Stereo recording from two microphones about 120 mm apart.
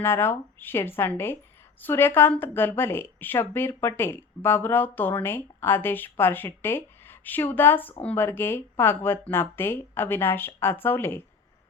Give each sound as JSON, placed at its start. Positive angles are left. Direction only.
{"t": 0.0, "sound": "a woman's voice", "side_deg": 20}